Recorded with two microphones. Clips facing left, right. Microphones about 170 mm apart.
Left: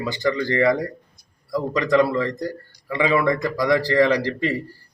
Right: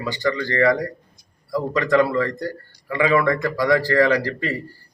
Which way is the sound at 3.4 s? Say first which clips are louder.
Right 1 dB; centre (ahead or behind).